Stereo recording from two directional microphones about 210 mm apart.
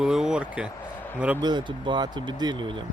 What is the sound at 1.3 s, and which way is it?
Speech, 20° right (ahead or behind).